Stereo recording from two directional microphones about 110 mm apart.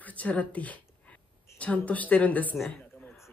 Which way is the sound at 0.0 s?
15° left (ahead or behind).